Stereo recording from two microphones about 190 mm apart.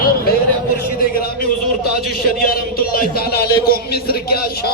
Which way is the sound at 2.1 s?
50° left (ahead or behind).